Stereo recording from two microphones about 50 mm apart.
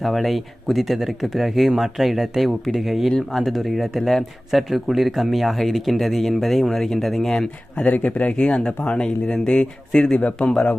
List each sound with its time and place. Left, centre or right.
0.0 s speech: centre
7.8 s speech: left